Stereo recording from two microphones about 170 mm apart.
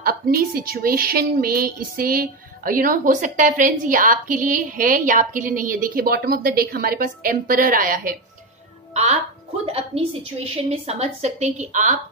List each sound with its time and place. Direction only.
0.0 s a woman's voice: 60° right (ahead or behind)
8.9 s a woman's voice: 40° right (ahead or behind)